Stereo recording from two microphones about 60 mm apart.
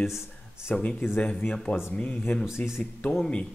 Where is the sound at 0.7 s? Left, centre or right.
Left.